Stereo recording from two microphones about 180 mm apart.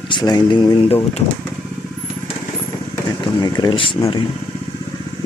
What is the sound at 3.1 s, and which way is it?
Speech, 20° left (ahead or behind).